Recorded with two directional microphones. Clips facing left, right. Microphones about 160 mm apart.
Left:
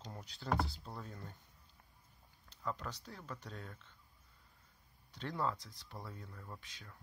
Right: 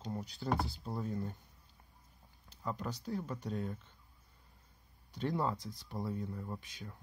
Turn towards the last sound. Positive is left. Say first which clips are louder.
# right 8 dB
turn(degrees=-15)  # may be behind; listen again after turning